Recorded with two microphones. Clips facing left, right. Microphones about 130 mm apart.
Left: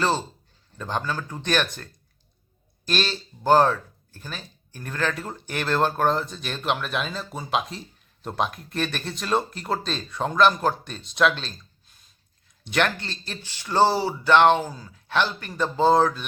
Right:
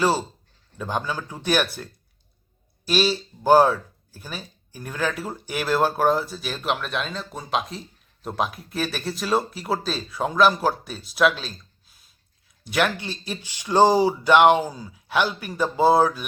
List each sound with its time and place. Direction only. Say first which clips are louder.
0.0 s speech: right 2 dB; 10° right (ahead or behind)